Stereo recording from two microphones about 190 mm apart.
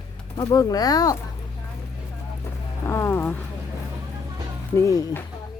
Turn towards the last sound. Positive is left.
turn(degrees=15)  # may be behind; listen again after turning